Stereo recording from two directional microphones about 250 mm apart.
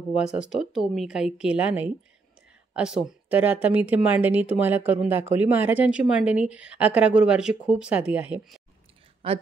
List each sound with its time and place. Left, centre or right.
0.1 s a woman's voice: centre
9.2 s a woman's voice: right